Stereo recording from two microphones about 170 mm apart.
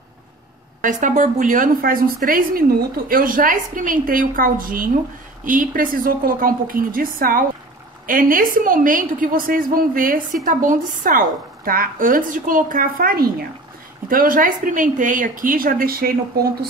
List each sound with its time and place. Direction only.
0.7 s a woman's voice: 50° right (ahead or behind)